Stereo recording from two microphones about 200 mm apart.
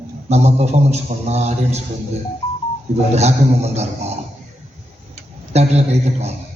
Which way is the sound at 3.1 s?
35° right (ahead or behind).